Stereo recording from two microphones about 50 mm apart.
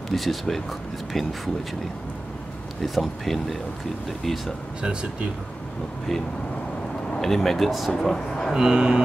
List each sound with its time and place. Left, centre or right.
0.1 s speech: centre
2.8 s speech: centre
7.2 s speech: centre
8.5 s speech: centre